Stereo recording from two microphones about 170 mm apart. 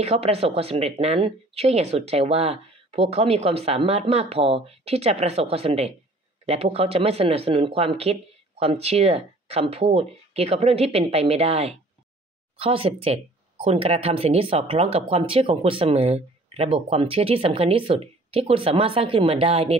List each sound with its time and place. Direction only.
0.0 s speech: 35° right (ahead or behind)